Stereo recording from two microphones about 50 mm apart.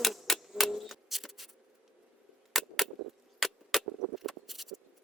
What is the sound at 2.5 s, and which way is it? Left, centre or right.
Cap gun, centre.